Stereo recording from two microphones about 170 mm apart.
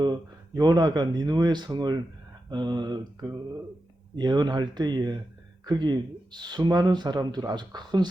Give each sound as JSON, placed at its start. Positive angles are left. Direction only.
{"t": 0.0, "sound": "speech", "side_deg": -25}